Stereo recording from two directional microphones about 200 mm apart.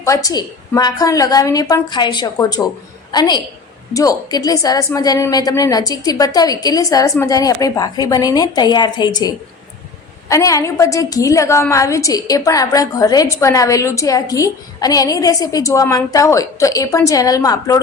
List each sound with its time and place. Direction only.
0.0 s a woman's voice: 15° left (ahead or behind)